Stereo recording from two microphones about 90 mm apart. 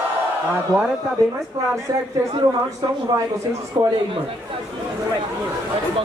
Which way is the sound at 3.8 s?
40° right (ahead or behind).